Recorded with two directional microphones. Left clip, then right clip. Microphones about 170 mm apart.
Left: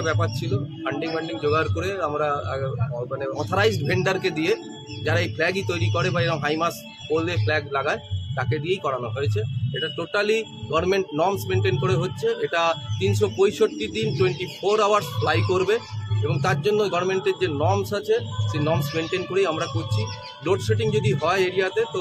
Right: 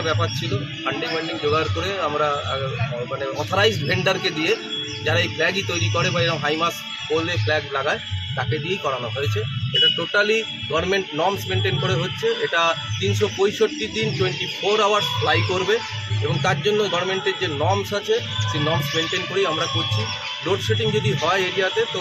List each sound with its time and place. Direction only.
0.0 s a man's voice: 35° left (ahead or behind)
1.4 s a man's voice: 35° left (ahead or behind)